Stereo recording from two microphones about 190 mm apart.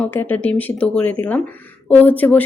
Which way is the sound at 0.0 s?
10° left (ahead or behind).